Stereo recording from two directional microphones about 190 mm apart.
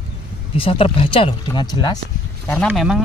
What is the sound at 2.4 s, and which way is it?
Speech, 10° left (ahead or behind).